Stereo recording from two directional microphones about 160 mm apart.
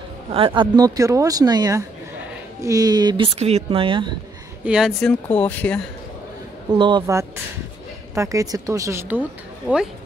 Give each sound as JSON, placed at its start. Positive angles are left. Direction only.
{"t": 0.3, "sound": "speech", "side_deg": -35}
{"t": 4.6, "sound": "speech", "side_deg": -5}
{"t": 5.3, "sound": "speech", "side_deg": 10}
{"t": 6.7, "sound": "speech", "side_deg": -30}
{"t": 8.1, "sound": "speech", "side_deg": -20}